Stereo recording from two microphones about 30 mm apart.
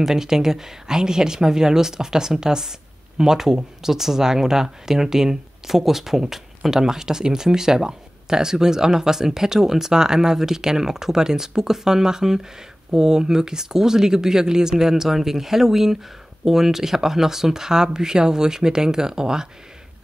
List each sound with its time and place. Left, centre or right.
0.0 s speech: centre